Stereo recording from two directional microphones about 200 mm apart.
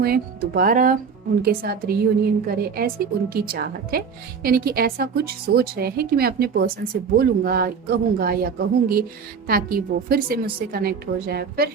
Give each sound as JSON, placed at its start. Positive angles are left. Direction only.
{"t": 0.0, "sound": "a woman's voice", "side_deg": -45}